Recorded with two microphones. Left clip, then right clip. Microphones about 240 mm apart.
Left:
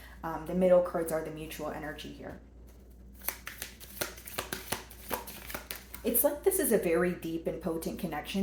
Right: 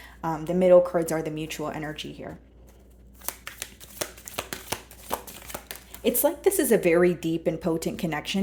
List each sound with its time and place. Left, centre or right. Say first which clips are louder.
0.2 s speech: right 6 dB; right
3.3 s shuffling cards: right 3 dB; right
3.9 s a sound: right 4 dB; right
6.0 s speech: right 6 dB; right